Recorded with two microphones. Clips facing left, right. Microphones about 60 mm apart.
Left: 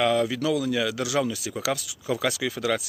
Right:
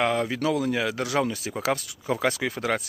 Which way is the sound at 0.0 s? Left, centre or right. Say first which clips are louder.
Left 1 dB; right.